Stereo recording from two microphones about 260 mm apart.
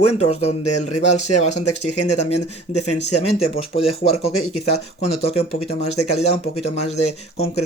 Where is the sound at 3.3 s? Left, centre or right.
Left.